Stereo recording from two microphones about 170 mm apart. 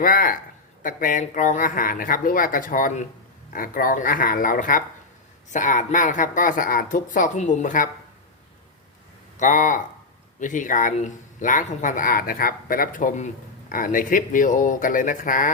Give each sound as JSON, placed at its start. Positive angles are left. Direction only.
{"t": 0.0, "sound": "speech", "side_deg": 55}
{"t": 9.4, "sound": "speech", "side_deg": 50}